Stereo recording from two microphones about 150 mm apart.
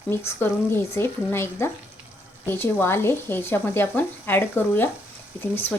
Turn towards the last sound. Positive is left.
turn(degrees=15)  # may be behind; listen again after turning